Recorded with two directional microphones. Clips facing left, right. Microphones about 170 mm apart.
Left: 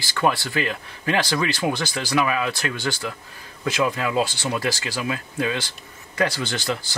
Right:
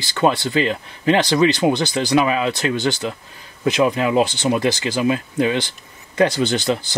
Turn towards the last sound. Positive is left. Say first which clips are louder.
# right 7 dB
turn(degrees=-20)  # may be behind; listen again after turning